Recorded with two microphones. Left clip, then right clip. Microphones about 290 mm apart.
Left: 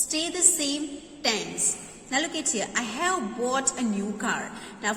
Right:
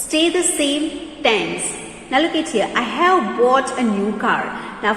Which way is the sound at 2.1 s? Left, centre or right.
Centre.